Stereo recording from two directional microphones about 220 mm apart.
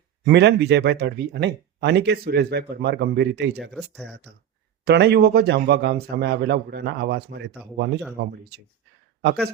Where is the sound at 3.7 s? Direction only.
Centre (ahead or behind).